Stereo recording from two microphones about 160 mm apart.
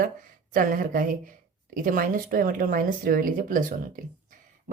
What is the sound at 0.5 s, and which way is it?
Speech, 60° right (ahead or behind).